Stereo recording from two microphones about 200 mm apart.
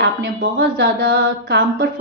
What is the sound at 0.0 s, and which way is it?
A woman's voice, 50° right (ahead or behind).